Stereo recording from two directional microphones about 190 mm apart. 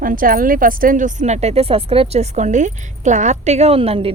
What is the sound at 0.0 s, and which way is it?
Speech, 45° right (ahead or behind).